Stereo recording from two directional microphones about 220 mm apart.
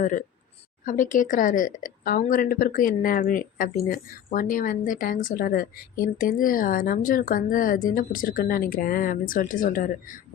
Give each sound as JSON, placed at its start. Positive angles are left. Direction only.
{"t": 0.0, "sound": "speech", "side_deg": 35}